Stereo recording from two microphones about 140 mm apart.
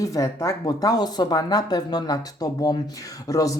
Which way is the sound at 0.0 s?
25° left (ahead or behind).